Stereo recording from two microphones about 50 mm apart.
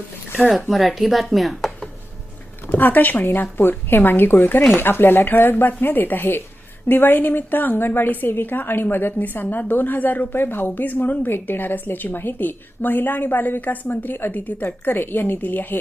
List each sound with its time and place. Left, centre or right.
0.3 s speech: centre
2.6 s a woman's voice: left